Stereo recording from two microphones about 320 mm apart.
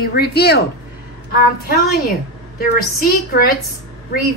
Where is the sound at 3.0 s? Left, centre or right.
Left.